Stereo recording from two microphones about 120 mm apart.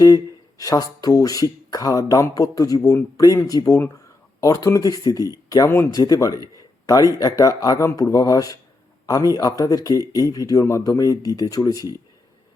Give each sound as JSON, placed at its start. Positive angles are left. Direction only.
{"t": 0.6, "sound": "speech", "side_deg": 30}